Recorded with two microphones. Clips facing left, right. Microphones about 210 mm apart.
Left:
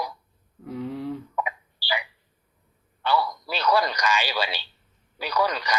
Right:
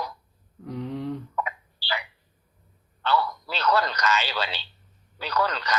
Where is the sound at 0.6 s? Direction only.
5° left (ahead or behind).